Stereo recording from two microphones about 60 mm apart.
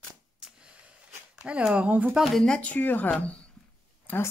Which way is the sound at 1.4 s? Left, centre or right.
Centre.